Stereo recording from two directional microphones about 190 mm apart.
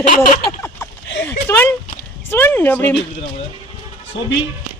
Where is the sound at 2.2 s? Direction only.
10° left (ahead or behind).